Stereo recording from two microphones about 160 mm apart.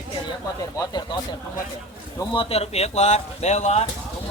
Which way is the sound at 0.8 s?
25° left (ahead or behind).